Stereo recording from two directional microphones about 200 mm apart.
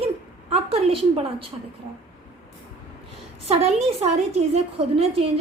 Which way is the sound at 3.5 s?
30° right (ahead or behind).